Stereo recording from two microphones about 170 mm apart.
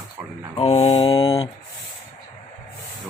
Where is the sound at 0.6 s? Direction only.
35° left (ahead or behind).